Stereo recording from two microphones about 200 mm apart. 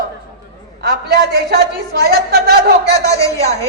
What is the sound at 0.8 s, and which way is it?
A man's voice, 50° right (ahead or behind).